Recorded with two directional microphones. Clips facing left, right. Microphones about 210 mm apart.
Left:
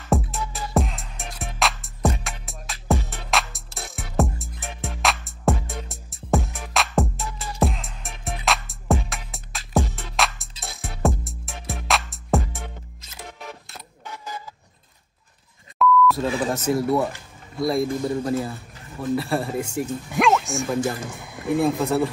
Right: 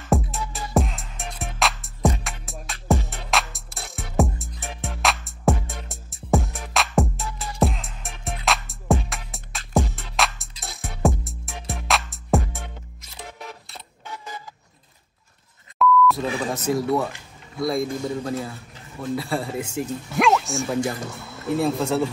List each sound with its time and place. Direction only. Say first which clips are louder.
0.1 s music: even; centre (ahead or behind)
15.8 s beep: even; centre (ahead or behind)
17.6 s a man's voice: left 2 dB; centre (ahead or behind)
21.2 s a sound: left 2 dB; 15° left (ahead or behind)
21.6 s speech: left 1 dB; 15° left (ahead or behind)